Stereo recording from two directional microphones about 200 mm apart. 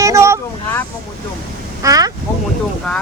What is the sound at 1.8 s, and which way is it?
Speech, 15° right (ahead or behind).